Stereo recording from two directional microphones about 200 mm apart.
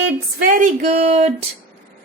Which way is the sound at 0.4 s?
40° right (ahead or behind).